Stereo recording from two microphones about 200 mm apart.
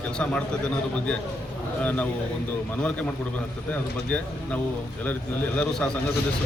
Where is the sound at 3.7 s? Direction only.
10° left (ahead or behind).